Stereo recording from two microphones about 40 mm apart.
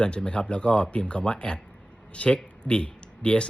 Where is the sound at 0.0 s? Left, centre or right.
Left.